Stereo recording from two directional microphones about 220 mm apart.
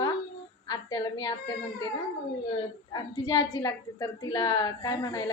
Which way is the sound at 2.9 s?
20° left (ahead or behind).